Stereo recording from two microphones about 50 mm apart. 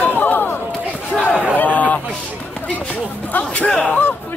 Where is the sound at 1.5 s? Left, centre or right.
Left.